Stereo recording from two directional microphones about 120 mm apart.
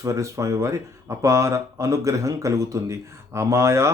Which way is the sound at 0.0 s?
25° right (ahead or behind).